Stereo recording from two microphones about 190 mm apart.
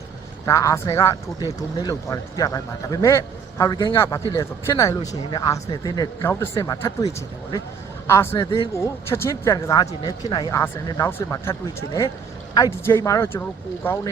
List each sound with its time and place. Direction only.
0.4 s speech: 15° left (ahead or behind)
8.0 s a man's voice: 15° left (ahead or behind)
8.4 s speech: 25° left (ahead or behind)
8.7 s speech: 15° left (ahead or behind)
12.5 s speech: 15° left (ahead or behind)